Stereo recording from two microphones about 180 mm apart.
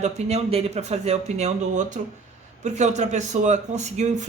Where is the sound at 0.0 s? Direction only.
35° right (ahead or behind).